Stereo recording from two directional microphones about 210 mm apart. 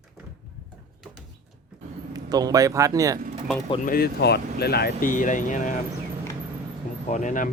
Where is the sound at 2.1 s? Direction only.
20° right (ahead or behind).